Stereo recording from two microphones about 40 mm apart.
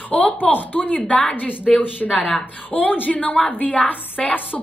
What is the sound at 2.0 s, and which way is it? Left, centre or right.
A woman's voice, left.